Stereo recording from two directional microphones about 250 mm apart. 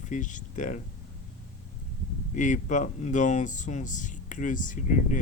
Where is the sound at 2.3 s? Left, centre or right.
Left.